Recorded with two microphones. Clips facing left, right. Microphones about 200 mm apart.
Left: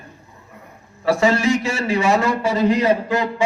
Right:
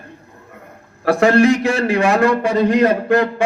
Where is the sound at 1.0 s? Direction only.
55° right (ahead or behind).